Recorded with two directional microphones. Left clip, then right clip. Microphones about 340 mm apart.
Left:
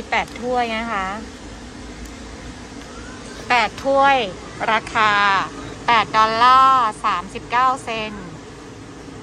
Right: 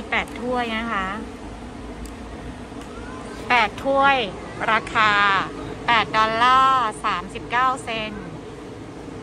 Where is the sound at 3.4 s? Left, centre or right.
Centre.